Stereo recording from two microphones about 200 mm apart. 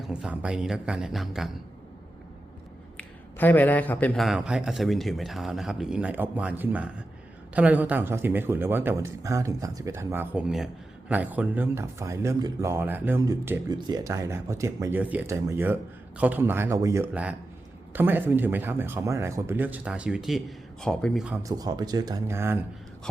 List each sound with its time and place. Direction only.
0.0 s a man's voice: 5° right (ahead or behind)
3.0 s a man's voice: 10° left (ahead or behind)
21.4 s speech: 20° right (ahead or behind)